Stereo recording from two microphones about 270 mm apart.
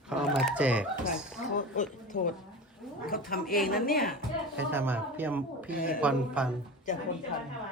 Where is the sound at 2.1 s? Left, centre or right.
Left.